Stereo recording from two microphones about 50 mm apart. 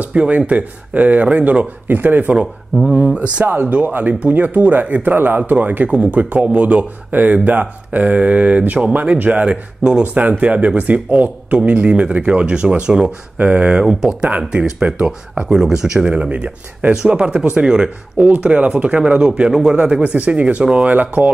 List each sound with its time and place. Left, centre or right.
0.1 s a man's voice: right
1.9 s speech: right
2.3 s speech: centre
3.4 s a man's voice: right; by 13.1 s centre
13.4 s speech: right
13.7 s speech: centre
14.3 s a man's voice: right
16.1 s a man's voice: right
16.9 s a man's voice: centre
20.0 s a man's voice: right